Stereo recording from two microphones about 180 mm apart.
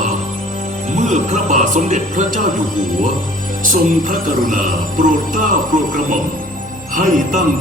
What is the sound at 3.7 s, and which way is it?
Speech, 50° right (ahead or behind).